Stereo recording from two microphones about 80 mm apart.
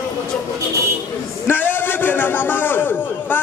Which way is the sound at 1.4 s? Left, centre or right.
Left.